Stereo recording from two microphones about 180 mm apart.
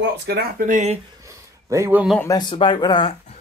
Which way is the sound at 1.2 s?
15° right (ahead or behind).